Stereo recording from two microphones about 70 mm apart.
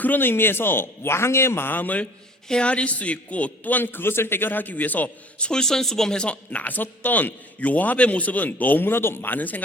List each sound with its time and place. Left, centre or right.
0.0 s a man's voice: left